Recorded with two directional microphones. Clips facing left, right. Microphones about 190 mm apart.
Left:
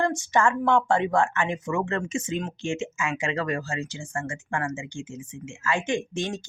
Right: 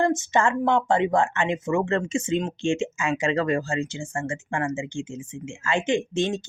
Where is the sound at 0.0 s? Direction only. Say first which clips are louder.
Right 2 dB; 20° right (ahead or behind).